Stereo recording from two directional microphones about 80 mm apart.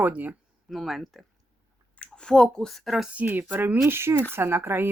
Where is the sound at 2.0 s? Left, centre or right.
Centre.